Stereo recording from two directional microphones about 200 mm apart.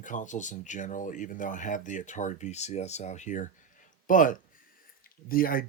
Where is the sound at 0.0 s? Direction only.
40° left (ahead or behind).